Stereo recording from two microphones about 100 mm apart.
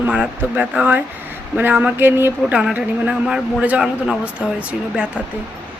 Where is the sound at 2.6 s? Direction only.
10° right (ahead or behind).